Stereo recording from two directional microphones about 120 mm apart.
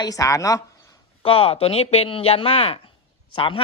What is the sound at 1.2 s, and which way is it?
Speech, 50° left (ahead or behind).